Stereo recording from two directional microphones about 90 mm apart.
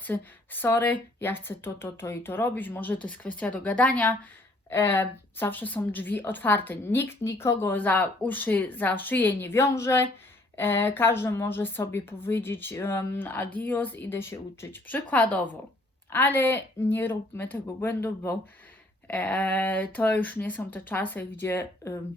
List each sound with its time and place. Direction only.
0.0 s a woman's voice: 20° left (ahead or behind)